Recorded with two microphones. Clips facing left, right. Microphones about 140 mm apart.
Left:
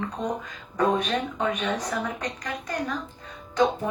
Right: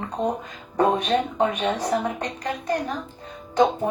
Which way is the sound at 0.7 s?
30° right (ahead or behind).